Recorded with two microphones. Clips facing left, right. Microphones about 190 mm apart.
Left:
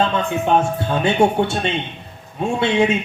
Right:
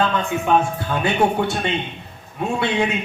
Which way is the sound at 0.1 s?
25° left (ahead or behind).